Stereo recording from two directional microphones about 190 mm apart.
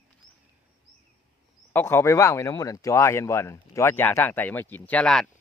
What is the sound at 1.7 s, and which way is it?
Speech, 10° left (ahead or behind).